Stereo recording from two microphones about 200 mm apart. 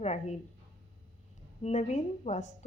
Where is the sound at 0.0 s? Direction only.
35° left (ahead or behind).